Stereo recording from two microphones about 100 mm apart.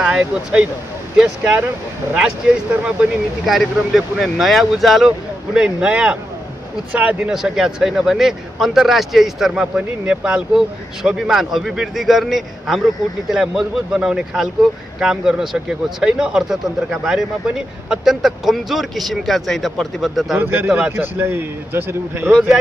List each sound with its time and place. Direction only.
0.0 s speech: 10° right (ahead or behind)
2.1 s speech: 10° right (ahead or behind)
20.3 s a man's voice: 25° right (ahead or behind)